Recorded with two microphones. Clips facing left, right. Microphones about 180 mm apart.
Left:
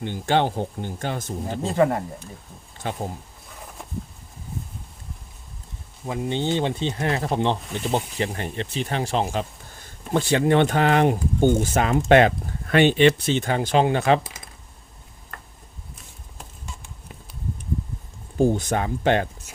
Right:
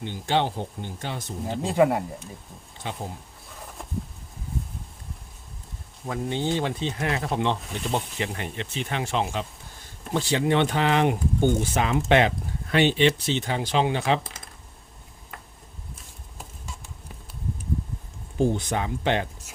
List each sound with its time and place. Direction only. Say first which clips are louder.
0.0 s speech: left 3 dB; 50° left (ahead or behind)
1.5 s speech: even; centre (ahead or behind)
2.8 s speech: left 4 dB; 50° left (ahead or behind)
6.1 s speech: left 2 dB; 25° left (ahead or behind)
7.6 s speech: left 3 dB; centre (ahead or behind)
8.2 s speech: left 4 dB; 35° left (ahead or behind)
10.1 s speech: left 4 dB; 55° left (ahead or behind)
15.3 s a sound: even; centre (ahead or behind)
18.3 s speech: left 3 dB; 45° left (ahead or behind)